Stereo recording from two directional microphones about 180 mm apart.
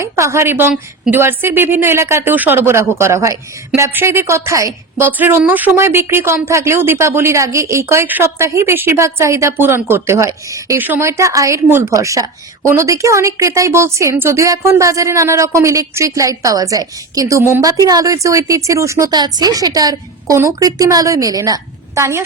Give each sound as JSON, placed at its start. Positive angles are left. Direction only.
{"t": 0.0, "sound": "a woman's voice", "side_deg": -15}